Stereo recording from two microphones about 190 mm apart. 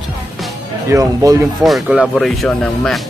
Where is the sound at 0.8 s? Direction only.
15° right (ahead or behind).